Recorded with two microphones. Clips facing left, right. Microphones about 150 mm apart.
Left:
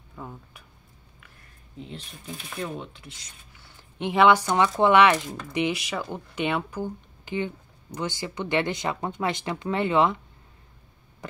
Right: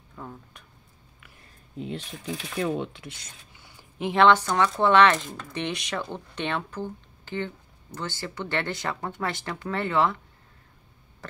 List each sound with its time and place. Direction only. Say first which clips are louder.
0.1 s speech: left 1 dB; 5° left (ahead or behind)
1.9 s speech: right 7 dB; 85° right; by 3.3 s 70° right (ahead or behind)
4.0 s speech: even; 5° left (ahead or behind)